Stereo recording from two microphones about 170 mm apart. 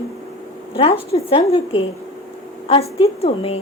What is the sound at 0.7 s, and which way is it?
A woman's voice, 35° left (ahead or behind).